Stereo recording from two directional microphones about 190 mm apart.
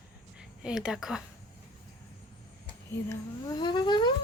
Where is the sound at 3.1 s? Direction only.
20° left (ahead or behind).